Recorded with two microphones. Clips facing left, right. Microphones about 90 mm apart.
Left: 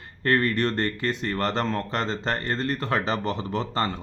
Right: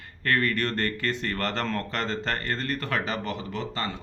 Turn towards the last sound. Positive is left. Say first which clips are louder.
# left 5 dB
turn(degrees=35)  # may be behind; listen again after turning